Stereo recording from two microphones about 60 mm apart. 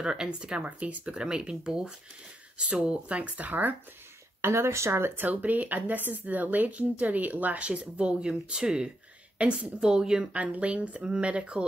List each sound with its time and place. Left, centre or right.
0.0 s a woman's voice: centre
4.4 s speech: right
5.1 s a woman's voice: right